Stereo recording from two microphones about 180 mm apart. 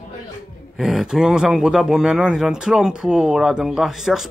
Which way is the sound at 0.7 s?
Centre (ahead or behind).